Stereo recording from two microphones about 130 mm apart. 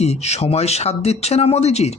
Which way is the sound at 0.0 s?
55° left (ahead or behind).